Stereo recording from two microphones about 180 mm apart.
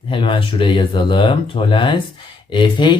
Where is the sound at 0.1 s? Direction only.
25° left (ahead or behind).